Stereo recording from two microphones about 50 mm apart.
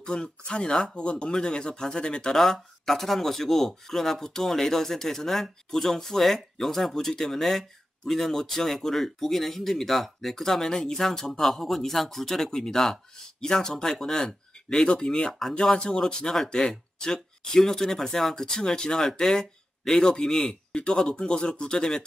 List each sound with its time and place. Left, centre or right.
0.0 s speech: centre